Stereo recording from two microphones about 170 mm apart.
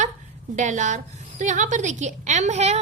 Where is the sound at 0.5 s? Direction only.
45° right (ahead or behind).